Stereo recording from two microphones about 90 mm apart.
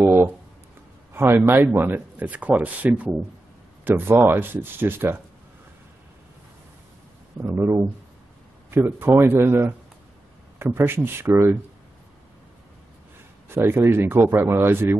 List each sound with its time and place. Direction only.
0.0 s a sound: 25° right (ahead or behind)
1.1 s speech: 25° right (ahead or behind)
7.4 s speech: 30° right (ahead or behind)
13.5 s speech: 25° right (ahead or behind)